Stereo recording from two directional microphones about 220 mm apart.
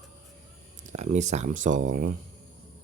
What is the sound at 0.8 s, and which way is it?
Speech, 30° right (ahead or behind).